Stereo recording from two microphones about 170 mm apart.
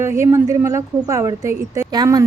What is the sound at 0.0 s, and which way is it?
A woman's voice, 15° right (ahead or behind).